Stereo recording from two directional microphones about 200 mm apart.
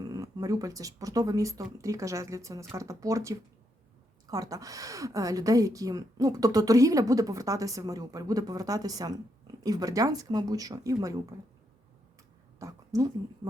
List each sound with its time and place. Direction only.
0.0 s speech: 15° right (ahead or behind)
12.5 s speech: 15° right (ahead or behind)